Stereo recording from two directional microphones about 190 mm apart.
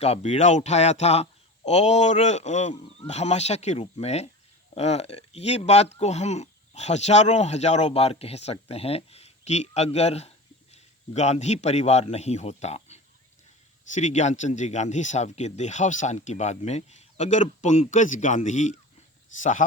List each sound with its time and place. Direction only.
0.0 s speech: 35° left (ahead or behind)